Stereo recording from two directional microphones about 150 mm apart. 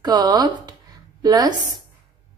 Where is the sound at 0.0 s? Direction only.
25° right (ahead or behind).